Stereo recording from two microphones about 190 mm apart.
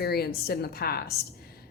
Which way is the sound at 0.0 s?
55° left (ahead or behind).